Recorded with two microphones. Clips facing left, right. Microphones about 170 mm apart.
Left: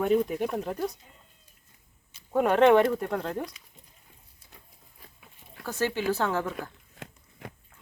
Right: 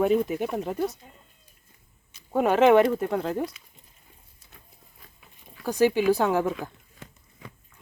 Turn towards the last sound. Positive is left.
turn(degrees=-15)  # may be behind; listen again after turning